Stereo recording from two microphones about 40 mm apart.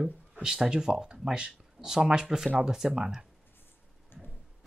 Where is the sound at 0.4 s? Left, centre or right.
Centre.